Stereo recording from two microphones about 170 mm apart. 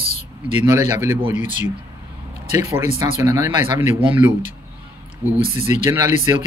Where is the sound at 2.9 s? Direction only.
20° right (ahead or behind).